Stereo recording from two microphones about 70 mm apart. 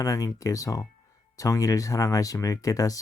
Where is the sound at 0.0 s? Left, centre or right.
Left.